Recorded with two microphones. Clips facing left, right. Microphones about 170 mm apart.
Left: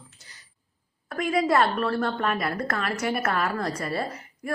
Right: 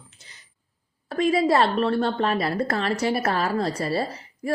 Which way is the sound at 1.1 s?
30° right (ahead or behind).